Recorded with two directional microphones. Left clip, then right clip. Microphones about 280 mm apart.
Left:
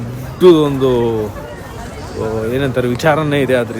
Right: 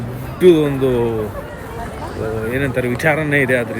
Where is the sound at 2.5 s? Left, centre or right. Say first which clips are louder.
Left 1 dB; centre.